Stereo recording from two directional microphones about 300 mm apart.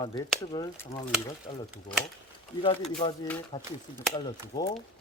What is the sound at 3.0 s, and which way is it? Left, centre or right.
Speech, left.